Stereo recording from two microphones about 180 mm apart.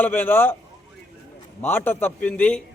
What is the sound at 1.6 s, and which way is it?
A man's voice, 10° left (ahead or behind).